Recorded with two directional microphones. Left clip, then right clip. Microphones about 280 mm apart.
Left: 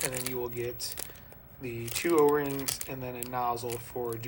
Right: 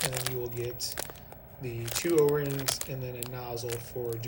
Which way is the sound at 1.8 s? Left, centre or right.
Centre.